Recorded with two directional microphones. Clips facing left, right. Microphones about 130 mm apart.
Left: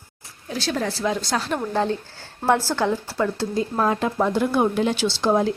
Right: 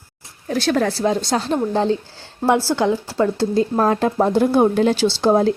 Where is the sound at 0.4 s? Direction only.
55° right (ahead or behind).